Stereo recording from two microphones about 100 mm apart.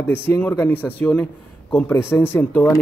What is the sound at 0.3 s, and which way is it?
A man's voice, 20° left (ahead or behind).